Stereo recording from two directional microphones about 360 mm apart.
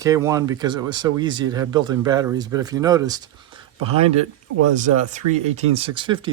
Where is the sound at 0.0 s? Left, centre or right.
Centre.